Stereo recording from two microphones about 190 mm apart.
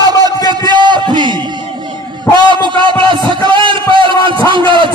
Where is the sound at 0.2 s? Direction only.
20° right (ahead or behind).